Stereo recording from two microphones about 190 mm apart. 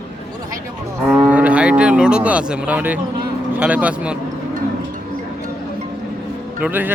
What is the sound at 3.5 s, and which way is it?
Speech, 10° right (ahead or behind).